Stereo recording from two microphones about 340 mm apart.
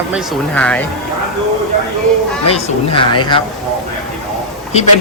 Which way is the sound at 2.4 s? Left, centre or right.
Centre.